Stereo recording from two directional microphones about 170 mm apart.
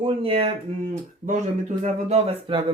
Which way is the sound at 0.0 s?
35° right (ahead or behind).